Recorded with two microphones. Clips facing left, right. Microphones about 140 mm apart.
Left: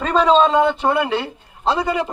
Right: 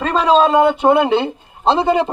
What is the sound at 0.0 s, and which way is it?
A man's voice, centre (ahead or behind).